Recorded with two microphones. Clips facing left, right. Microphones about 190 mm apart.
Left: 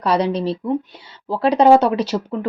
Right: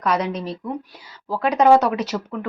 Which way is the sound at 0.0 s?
30° left (ahead or behind).